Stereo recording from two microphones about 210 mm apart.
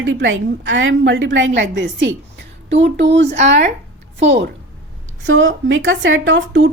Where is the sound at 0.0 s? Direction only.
65° right (ahead or behind).